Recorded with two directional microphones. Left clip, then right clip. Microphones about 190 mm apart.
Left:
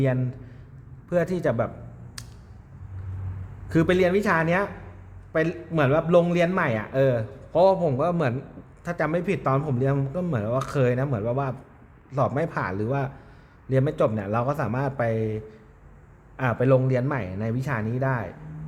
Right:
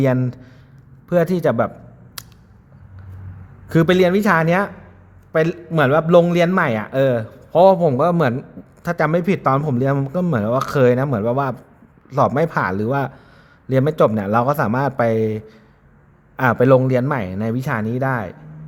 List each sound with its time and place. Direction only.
0.0 s a man's voice: 50° right (ahead or behind)
2.2 s a sound: 40° right (ahead or behind)
3.7 s a man's voice: 40° right (ahead or behind)